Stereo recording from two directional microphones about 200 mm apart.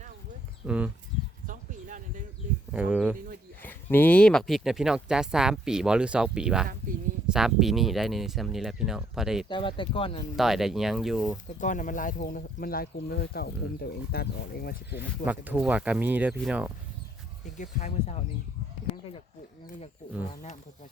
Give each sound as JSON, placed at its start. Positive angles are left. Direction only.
{"t": 0.6, "sound": "speech", "side_deg": -5}
{"t": 1.5, "sound": "a sound", "side_deg": -40}
{"t": 2.7, "sound": "speech", "side_deg": -5}
{"t": 3.6, "sound": "speech", "side_deg": 10}
{"t": 9.5, "sound": "speech", "side_deg": 25}
{"t": 10.3, "sound": "speech", "side_deg": 0}
{"t": 11.6, "sound": "speech", "side_deg": 40}
{"t": 14.9, "sound": "speech", "side_deg": -10}
{"t": 17.6, "sound": "speech", "side_deg": 35}